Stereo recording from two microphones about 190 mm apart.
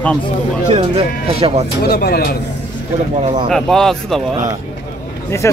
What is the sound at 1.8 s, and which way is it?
Speech, 55° left (ahead or behind).